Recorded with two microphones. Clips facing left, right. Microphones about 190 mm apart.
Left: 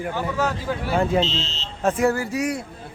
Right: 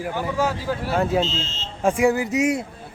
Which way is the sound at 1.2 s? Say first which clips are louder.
Even; 50° right (ahead or behind).